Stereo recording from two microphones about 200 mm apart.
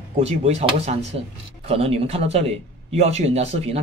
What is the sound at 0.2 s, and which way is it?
Speech, 35° right (ahead or behind).